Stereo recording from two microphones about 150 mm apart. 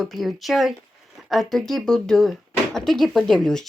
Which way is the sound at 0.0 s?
Centre (ahead or behind).